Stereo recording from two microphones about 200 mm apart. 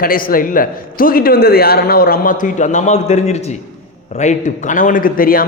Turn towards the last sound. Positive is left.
turn(degrees=45)  # may be behind; listen again after turning